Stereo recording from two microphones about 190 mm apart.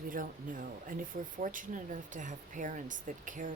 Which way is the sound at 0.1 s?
45° right (ahead or behind).